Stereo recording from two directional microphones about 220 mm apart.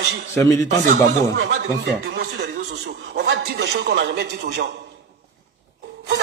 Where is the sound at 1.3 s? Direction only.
55° right (ahead or behind).